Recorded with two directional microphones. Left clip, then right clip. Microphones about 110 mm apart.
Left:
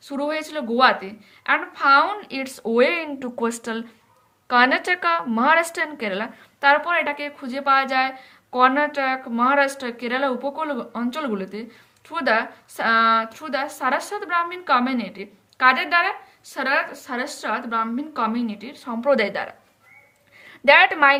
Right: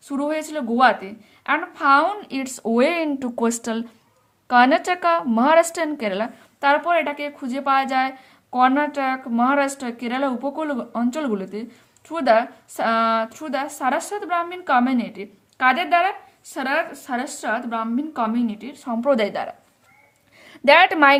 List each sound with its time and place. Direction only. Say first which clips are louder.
0.1 s speech: right 1 dB; 45° right (ahead or behind)
20.4 s a woman's voice: even; 60° right (ahead or behind)